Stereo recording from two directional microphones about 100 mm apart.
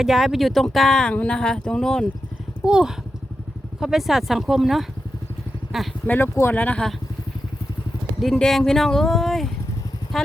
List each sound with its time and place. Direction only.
0.0 s speech: 5° right (ahead or behind)
2.6 s speech: 10° right (ahead or behind)
6.1 s speech: 20° left (ahead or behind)
8.2 s speech: 5° left (ahead or behind)